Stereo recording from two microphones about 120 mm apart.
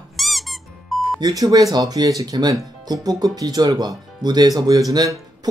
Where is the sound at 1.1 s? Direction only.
30° right (ahead or behind).